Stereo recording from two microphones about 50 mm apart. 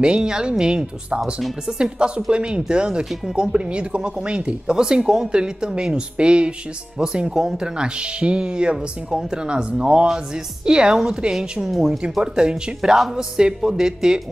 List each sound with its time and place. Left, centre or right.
0.0 s speech: centre